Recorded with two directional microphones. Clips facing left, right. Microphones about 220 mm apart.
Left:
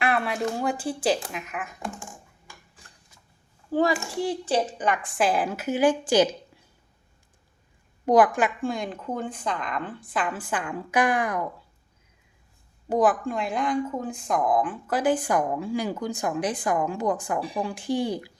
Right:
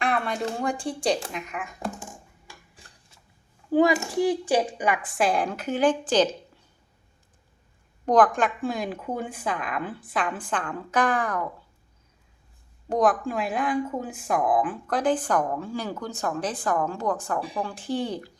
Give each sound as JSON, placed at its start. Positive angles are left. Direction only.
{"t": 0.0, "sound": "a sound", "side_deg": 5}
{"t": 0.6, "sound": "a woman's voice", "side_deg": 5}
{"t": 3.7, "sound": "a woman's voice", "side_deg": -15}
{"t": 8.0, "sound": "a woman's voice", "side_deg": 10}
{"t": 12.9, "sound": "speech", "side_deg": 5}